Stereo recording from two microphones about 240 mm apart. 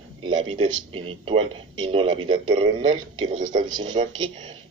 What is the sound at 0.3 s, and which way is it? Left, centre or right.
Speech, right.